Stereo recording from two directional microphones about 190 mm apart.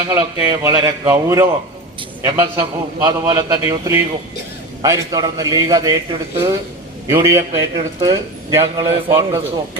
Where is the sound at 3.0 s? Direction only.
20° right (ahead or behind).